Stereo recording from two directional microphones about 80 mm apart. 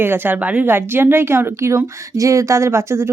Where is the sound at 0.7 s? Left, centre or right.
Right.